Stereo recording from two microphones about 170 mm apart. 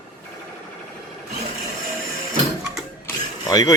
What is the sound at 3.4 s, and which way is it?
Speech, 20° left (ahead or behind).